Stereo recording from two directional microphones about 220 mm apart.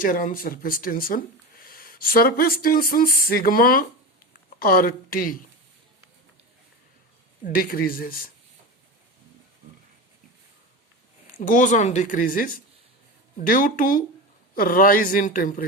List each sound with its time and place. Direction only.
0.0 s speech: 40° left (ahead or behind)
7.4 s speech: 40° left (ahead or behind)
11.3 s speech: 40° left (ahead or behind)